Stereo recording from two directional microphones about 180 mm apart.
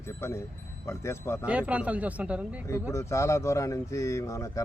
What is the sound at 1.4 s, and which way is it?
Speech, 5° right (ahead or behind).